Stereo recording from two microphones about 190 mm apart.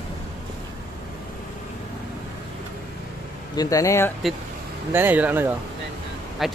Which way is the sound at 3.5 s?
20° left (ahead or behind).